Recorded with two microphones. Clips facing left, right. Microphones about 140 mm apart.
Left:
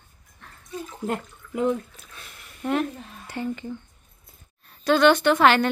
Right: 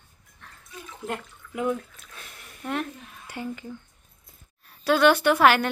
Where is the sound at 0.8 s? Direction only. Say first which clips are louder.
Left 3 dB; 35° left (ahead or behind).